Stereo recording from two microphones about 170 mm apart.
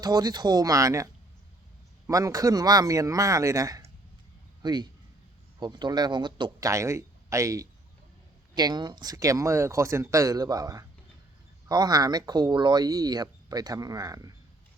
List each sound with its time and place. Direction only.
0.0 s speech: 25° right (ahead or behind)
2.0 s speech: 20° right (ahead or behind)